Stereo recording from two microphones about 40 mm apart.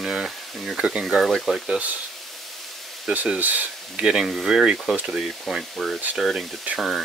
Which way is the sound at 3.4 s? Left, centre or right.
Right.